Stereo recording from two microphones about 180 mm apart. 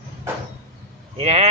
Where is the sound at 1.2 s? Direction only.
35° right (ahead or behind).